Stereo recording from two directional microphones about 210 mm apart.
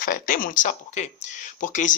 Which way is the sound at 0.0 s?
40° left (ahead or behind).